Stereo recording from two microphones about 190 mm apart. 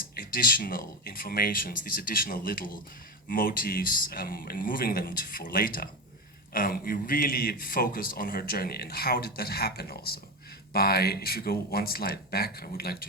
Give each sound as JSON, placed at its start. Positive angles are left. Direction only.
{"t": 0.2, "sound": "a man's voice", "side_deg": 50}